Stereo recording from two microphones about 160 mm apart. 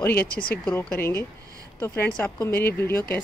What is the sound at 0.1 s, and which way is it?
Speech, 70° left (ahead or behind).